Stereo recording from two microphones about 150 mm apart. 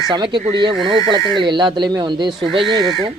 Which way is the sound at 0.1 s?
30° right (ahead or behind).